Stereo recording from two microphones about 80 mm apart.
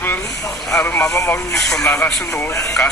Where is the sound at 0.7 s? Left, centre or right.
Centre.